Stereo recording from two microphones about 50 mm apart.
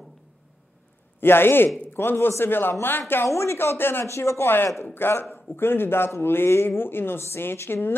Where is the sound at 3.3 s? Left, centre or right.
Left.